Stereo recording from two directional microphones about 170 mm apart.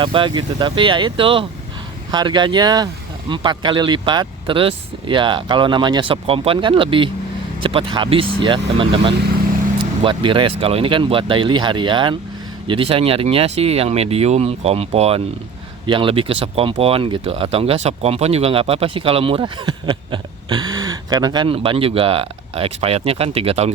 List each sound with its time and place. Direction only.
0.0 s speech: 30° right (ahead or behind)